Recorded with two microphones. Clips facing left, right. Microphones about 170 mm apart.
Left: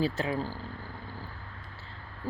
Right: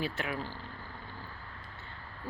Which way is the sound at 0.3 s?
40° left (ahead or behind).